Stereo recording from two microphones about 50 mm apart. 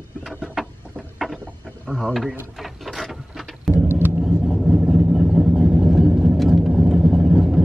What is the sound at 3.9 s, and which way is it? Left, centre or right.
Vehicle, right.